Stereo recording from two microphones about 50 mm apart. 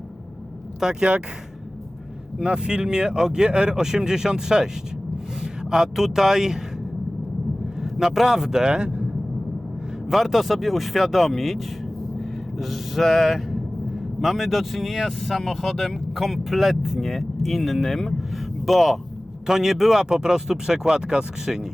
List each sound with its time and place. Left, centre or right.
0.8 s speech: centre
2.4 s speech: centre
7.8 s speech: centre
10.1 s speech: centre